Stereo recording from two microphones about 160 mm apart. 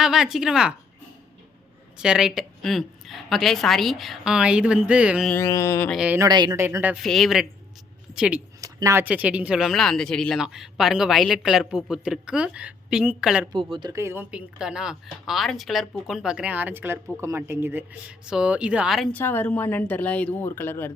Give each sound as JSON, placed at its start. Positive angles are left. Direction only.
{"t": 0.0, "sound": "speech", "side_deg": -5}
{"t": 2.0, "sound": "speech", "side_deg": -5}
{"t": 5.3, "sound": "a woman's voice", "side_deg": 20}
{"t": 5.9, "sound": "speech", "side_deg": -5}
{"t": 6.1, "sound": "speech", "side_deg": -25}
{"t": 6.6, "sound": "a woman's voice", "side_deg": -15}
{"t": 7.0, "sound": "speech", "side_deg": 0}
{"t": 8.6, "sound": "speech", "side_deg": -20}
{"t": 13.5, "sound": "a woman's voice", "side_deg": -30}
{"t": 19.1, "sound": "a woman's voice", "side_deg": 15}